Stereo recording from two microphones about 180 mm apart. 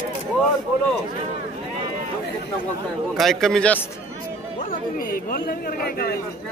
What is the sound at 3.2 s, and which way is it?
Speech, centre (ahead or behind).